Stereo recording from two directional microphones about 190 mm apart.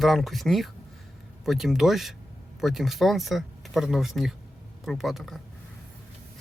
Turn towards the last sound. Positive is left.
turn(degrees=0)  # may be behind; listen again after turning